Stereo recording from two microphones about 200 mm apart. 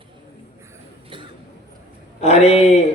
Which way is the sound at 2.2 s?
30° left (ahead or behind).